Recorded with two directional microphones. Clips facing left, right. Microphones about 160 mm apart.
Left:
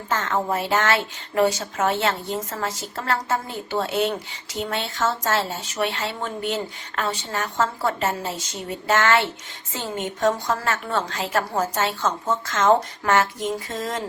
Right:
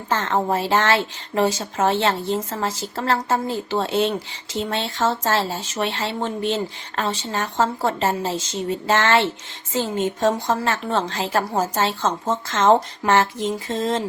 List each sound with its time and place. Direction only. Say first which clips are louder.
0.1 s a woman's voice: right 3 dB; 30° right (ahead or behind)